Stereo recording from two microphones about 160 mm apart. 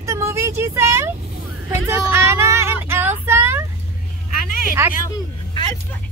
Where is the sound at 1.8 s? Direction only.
15° right (ahead or behind).